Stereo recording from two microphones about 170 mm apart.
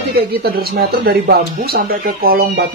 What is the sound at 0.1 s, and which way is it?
Speech, 70° right (ahead or behind).